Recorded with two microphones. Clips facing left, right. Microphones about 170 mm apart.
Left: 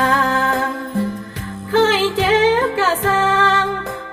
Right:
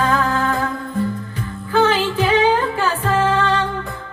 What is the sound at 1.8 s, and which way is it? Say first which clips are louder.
Music: left 1 dB; 90° left.